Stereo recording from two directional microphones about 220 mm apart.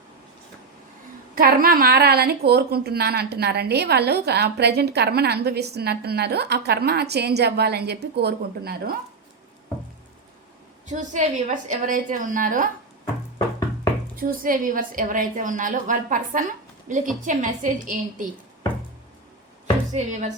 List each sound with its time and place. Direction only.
1.4 s a woman's voice: 40° right (ahead or behind)
10.8 s a woman's voice: 35° right (ahead or behind)
14.2 s a woman's voice: 40° right (ahead or behind)
19.9 s a woman's voice: 35° right (ahead or behind)